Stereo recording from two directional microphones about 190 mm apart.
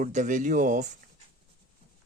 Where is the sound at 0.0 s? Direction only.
40° right (ahead or behind).